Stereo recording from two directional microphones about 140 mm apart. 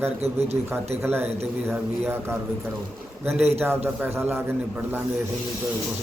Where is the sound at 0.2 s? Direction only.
50° right (ahead or behind).